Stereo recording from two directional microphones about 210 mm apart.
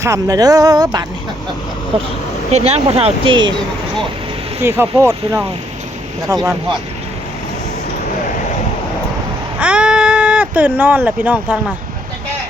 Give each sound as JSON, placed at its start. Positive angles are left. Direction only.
{"t": 0.0, "sound": "speech", "side_deg": -15}
{"t": 2.5, "sound": "speech", "side_deg": -30}
{"t": 4.6, "sound": "speech", "side_deg": -10}
{"t": 9.6, "sound": "a sound", "side_deg": -5}